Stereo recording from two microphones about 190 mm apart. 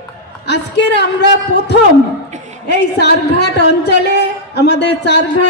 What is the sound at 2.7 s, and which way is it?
Speech, 60° left (ahead or behind).